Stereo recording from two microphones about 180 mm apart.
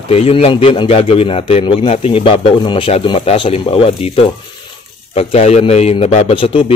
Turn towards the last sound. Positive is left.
turn(degrees=30)  # may be behind; listen again after turning